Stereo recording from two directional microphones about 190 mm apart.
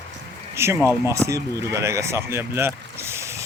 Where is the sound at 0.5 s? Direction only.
15° right (ahead or behind).